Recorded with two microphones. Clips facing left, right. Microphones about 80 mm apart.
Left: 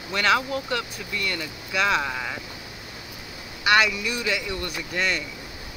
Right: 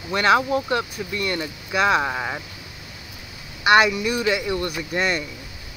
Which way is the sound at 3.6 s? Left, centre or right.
Right.